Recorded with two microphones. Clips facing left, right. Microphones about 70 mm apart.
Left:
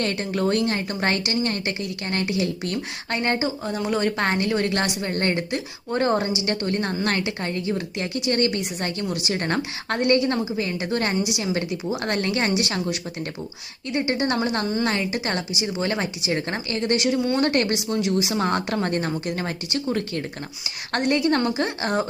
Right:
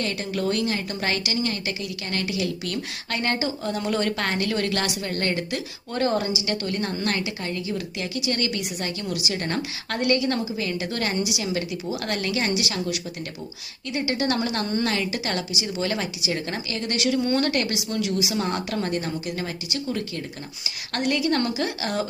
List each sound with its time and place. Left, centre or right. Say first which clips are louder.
0.0 s a woman's voice: left 3 dB; left
3.1 s a woman's voice: left 2 dB; left